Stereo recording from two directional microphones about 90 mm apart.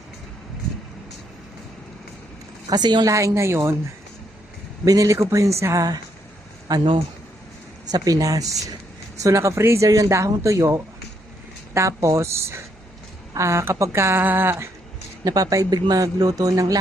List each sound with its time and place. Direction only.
2.6 s a woman's voice: 50° right (ahead or behind)
3.1 s speech: 35° right (ahead or behind)
4.9 s a man's voice: 40° right (ahead or behind)
7.9 s speech: 45° right (ahead or behind); by 14.5 s 25° right (ahead or behind)
15.2 s a man's voice: 40° right (ahead or behind)